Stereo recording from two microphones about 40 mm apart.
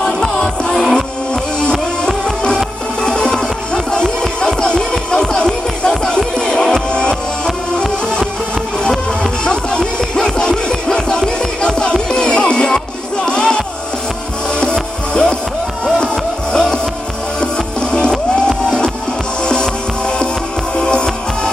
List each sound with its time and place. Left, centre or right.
0.0 s music: left
0.8 s music: centre
2.0 s music: centre
8.8 s music: centre
9.4 s music: left
14.6 s music: left
16.5 s music: left
20.7 s music: left